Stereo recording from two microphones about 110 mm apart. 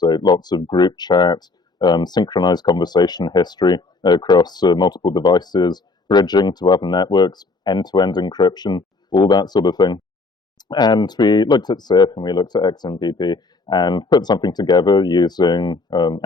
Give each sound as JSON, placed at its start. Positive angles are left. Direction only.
{"t": 0.0, "sound": "speech", "side_deg": 40}